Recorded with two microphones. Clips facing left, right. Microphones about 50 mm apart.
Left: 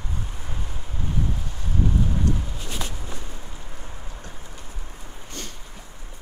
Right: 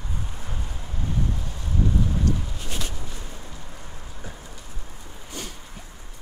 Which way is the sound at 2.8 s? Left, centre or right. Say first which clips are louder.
Left 1 dB; left.